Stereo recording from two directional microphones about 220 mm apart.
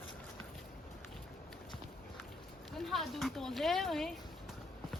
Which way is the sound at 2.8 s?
Centre (ahead or behind).